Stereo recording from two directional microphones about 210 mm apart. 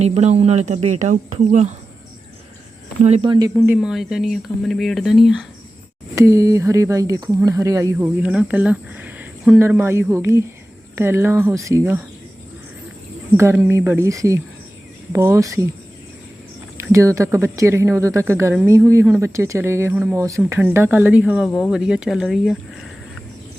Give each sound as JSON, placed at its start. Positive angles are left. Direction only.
{"t": 0.0, "sound": "speech", "side_deg": -30}
{"t": 3.0, "sound": "speech", "side_deg": -30}
{"t": 3.8, "sound": "speech", "side_deg": 0}
{"t": 6.1, "sound": "speech", "side_deg": -15}
{"t": 13.3, "sound": "speech", "side_deg": -10}
{"t": 16.7, "sound": "speech", "side_deg": -15}